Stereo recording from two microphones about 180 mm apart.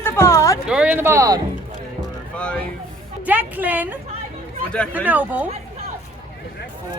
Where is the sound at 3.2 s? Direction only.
10° right (ahead or behind).